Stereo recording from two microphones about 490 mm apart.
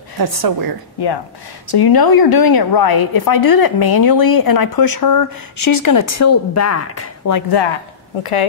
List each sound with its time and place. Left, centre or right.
0.2 s a woman's voice: right
0.9 s a woman's voice: left
8.2 s a woman's voice: left